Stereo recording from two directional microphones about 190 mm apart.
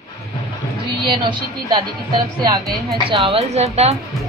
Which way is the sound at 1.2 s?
25° right (ahead or behind).